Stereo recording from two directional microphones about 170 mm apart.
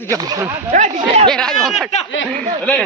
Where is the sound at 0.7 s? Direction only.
45° right (ahead or behind).